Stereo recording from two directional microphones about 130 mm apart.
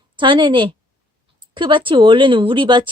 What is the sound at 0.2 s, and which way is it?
Speech, 40° right (ahead or behind).